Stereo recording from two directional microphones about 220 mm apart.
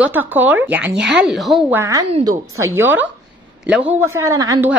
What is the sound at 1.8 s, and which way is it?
Speech, 15° right (ahead or behind).